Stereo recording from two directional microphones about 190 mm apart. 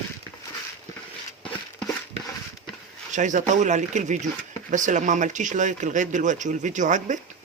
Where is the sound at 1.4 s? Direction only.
5° left (ahead or behind).